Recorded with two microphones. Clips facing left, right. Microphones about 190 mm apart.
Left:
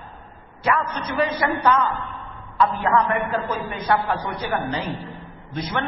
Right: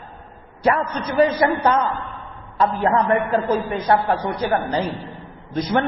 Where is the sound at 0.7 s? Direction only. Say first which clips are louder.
Right 4 dB; 35° right (ahead or behind).